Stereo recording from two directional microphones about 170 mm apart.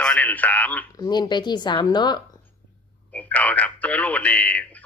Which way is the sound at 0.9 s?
20° left (ahead or behind).